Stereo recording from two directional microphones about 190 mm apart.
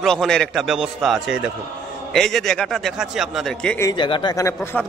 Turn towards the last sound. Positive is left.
turn(degrees=15)  # may be behind; listen again after turning